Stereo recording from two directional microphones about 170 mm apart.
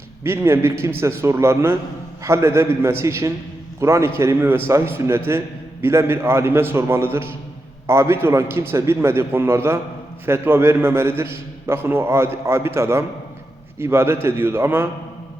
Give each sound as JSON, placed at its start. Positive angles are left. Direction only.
{"t": 0.3, "sound": "a man's voice", "side_deg": -15}